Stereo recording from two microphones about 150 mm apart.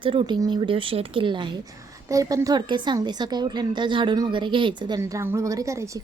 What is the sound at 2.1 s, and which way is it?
A woman's voice, 20° right (ahead or behind).